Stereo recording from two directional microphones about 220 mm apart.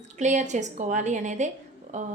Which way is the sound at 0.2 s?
30° right (ahead or behind).